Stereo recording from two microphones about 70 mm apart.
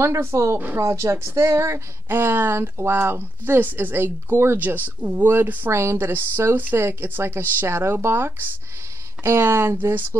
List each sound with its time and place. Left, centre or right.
0.0 s a woman's voice: right
5.7 s a woman's voice: right